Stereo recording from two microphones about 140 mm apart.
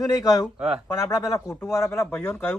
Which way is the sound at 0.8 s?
25° left (ahead or behind).